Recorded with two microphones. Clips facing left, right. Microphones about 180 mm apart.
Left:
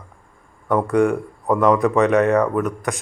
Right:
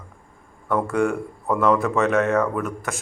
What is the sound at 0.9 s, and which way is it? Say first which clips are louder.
Speech: left 4 dB; centre (ahead or behind).